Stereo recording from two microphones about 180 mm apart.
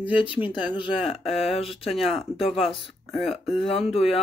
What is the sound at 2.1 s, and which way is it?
Speech, 30° left (ahead or behind).